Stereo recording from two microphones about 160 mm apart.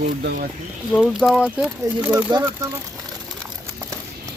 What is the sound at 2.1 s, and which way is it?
Speech, 25° right (ahead or behind).